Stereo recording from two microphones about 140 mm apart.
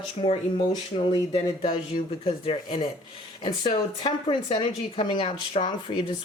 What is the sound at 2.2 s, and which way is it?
Speech, 40° left (ahead or behind).